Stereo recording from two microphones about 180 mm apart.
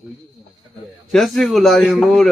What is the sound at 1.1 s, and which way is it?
Speech, centre (ahead or behind).